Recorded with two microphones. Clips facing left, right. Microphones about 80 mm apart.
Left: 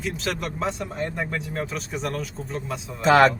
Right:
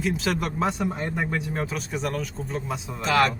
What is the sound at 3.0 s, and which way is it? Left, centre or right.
Speech, left.